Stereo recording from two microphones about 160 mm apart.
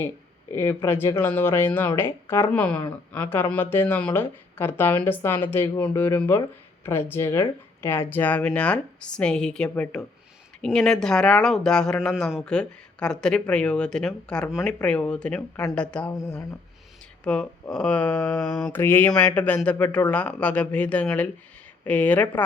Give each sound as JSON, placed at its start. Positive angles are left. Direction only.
{"t": 0.5, "sound": "speech", "side_deg": 15}
{"t": 17.2, "sound": "speech", "side_deg": 5}